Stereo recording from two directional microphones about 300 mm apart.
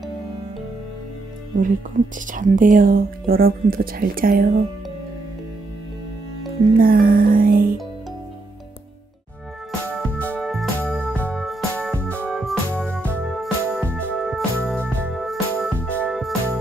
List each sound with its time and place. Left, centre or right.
2.3 s speech: right
6.8 s music: right
9.7 s music: centre
12.1 s organ: centre
13.1 s music: centre